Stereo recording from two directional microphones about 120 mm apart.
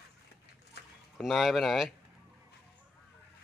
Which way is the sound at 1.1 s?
Centre (ahead or behind).